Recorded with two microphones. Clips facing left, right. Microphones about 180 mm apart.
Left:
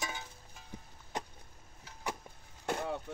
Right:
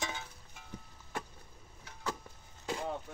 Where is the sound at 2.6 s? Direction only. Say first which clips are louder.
Left 2 dB; 65° left (ahead or behind).